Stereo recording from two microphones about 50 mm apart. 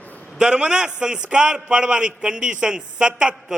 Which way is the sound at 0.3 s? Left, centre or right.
Centre.